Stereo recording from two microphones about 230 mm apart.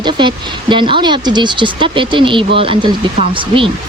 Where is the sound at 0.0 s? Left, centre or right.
Centre.